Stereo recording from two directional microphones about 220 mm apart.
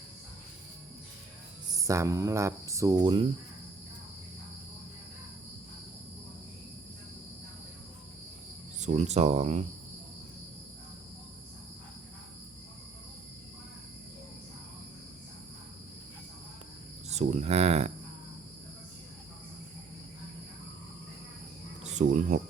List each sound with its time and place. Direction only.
1.8 s speech: 15° right (ahead or behind)
8.8 s speech: 30° right (ahead or behind)
17.1 s speech: 30° right (ahead or behind)
21.9 s speech: 30° right (ahead or behind)